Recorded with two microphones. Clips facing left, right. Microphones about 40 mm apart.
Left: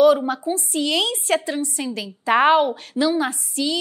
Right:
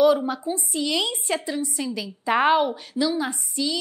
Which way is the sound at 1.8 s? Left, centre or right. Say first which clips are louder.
Left 1 dB; left.